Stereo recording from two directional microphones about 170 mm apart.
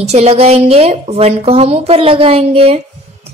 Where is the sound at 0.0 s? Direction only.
40° right (ahead or behind).